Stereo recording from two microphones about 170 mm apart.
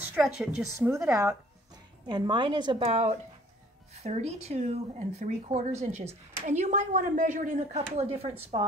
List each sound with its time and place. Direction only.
0.0 s a woman's voice: 5° right (ahead or behind)
0.7 s speech: 15° right (ahead or behind)
2.0 s a woman's voice: 25° right (ahead or behind)